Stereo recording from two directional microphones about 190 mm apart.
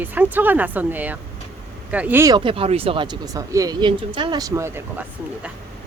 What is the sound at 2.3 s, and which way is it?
Speech, 25° right (ahead or behind).